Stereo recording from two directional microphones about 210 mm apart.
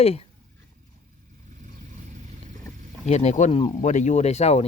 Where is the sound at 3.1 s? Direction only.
35° left (ahead or behind).